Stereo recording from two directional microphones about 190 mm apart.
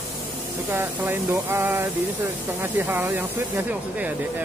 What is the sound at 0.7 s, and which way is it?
Speech, 10° right (ahead or behind).